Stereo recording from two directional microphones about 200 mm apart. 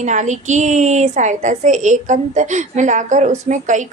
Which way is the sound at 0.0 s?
35° right (ahead or behind).